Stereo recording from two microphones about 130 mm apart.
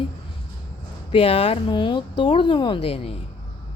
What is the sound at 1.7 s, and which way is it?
A woman's voice, 35° left (ahead or behind).